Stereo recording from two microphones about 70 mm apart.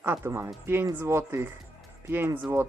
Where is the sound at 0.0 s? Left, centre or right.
Right.